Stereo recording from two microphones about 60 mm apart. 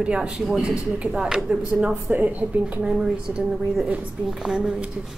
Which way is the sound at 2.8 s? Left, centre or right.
Centre.